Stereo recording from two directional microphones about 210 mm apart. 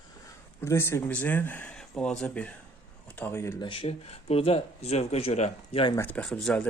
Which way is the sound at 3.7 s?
30° left (ahead or behind).